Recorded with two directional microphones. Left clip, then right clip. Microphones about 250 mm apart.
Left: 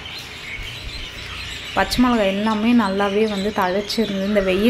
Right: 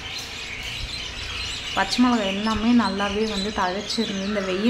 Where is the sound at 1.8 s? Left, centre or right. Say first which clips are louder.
Left 4 dB; centre.